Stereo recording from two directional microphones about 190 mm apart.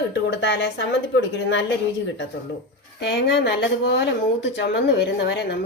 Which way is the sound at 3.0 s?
60° left (ahead or behind).